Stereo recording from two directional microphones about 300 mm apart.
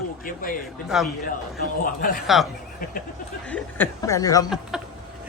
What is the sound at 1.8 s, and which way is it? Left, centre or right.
Speech, left.